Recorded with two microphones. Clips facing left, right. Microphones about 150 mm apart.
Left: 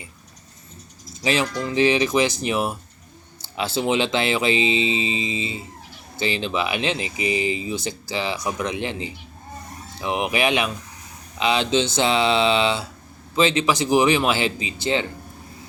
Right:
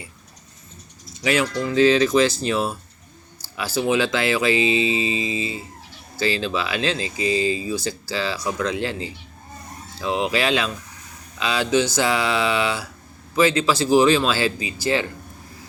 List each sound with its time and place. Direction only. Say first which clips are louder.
1.2 s speech: right 1 dB; 25° left (ahead or behind)